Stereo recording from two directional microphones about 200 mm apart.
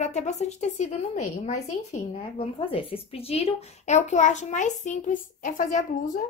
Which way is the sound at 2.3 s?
25° left (ahead or behind).